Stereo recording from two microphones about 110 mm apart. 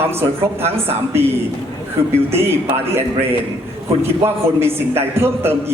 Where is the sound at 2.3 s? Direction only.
20° right (ahead or behind).